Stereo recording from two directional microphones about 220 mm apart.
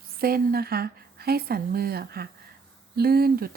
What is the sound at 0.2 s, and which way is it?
Speech, 45° right (ahead or behind).